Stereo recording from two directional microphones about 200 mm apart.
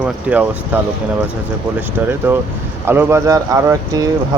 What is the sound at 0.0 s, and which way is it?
Speech, 5° right (ahead or behind).